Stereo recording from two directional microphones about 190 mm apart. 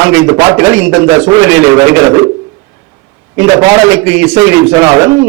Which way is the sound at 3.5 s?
20° right (ahead or behind).